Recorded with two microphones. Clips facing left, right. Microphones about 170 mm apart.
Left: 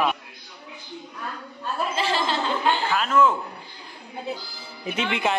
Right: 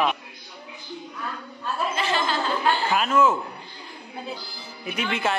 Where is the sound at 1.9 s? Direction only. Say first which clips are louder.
Left 2 dB; 30° left (ahead or behind).